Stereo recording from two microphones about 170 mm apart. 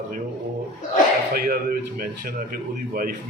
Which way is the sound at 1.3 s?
55° right (ahead or behind).